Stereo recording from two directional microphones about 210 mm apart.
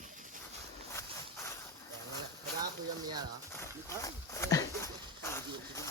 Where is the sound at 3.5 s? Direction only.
15° left (ahead or behind).